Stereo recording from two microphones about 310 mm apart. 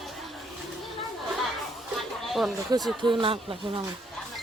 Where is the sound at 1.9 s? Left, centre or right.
Centre.